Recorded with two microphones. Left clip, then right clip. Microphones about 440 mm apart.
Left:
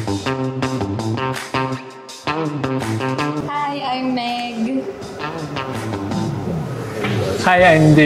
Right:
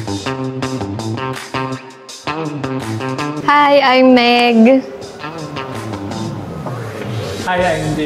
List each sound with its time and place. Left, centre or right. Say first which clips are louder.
0.1 s music: right 1 dB; centre
3.4 s a sound: right 12 dB; right
7.4 s speech: left 4 dB; left